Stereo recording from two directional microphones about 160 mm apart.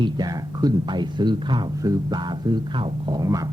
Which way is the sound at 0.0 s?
25° right (ahead or behind).